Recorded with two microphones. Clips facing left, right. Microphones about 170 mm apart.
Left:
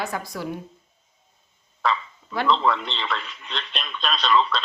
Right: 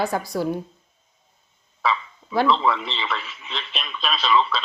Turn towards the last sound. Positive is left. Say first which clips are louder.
# even
turn(degrees=-5)  # may be behind; listen again after turning